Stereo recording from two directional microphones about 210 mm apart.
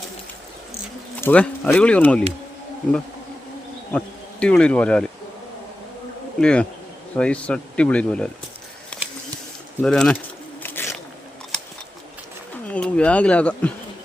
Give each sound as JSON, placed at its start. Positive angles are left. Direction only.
{"t": 1.2, "sound": "speech", "side_deg": 5}
{"t": 3.9, "sound": "speech", "side_deg": 5}
{"t": 6.4, "sound": "speech", "side_deg": 5}
{"t": 9.8, "sound": "speech", "side_deg": 5}
{"t": 10.6, "sound": "biting", "side_deg": 10}
{"t": 11.5, "sound": "scissors", "side_deg": 5}
{"t": 12.7, "sound": "speech", "side_deg": 5}